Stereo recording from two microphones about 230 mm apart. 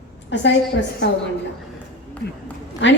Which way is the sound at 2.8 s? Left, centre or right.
Left.